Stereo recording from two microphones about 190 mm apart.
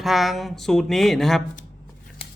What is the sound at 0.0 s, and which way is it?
Speech, centre (ahead or behind).